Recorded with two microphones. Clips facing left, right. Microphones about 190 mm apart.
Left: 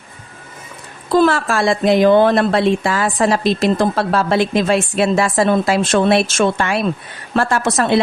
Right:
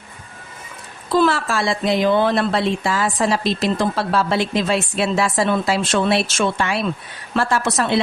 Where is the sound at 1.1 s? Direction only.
50° left (ahead or behind).